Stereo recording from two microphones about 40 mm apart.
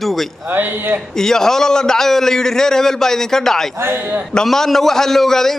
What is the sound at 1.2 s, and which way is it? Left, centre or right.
A man's voice, centre.